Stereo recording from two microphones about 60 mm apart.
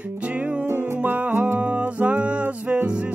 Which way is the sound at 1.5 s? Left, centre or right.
Right.